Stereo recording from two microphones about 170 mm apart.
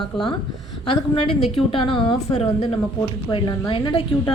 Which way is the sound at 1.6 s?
30° left (ahead or behind).